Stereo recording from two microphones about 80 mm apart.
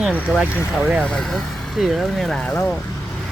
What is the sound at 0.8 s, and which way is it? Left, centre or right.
Speech, centre.